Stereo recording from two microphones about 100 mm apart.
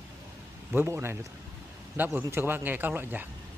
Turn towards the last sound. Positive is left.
turn(degrees=-20)  # may be behind; listen again after turning